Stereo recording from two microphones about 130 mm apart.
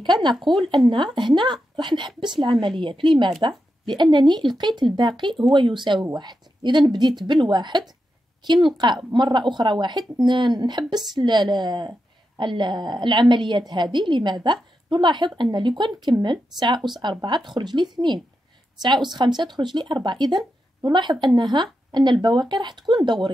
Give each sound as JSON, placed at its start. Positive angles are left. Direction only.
{"t": 0.0, "sound": "speech", "side_deg": -35}